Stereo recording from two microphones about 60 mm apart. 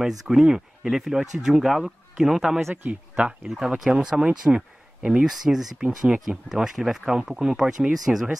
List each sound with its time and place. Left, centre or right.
0.3 s speech: centre
2.7 s speech: right
3.2 s speech: centre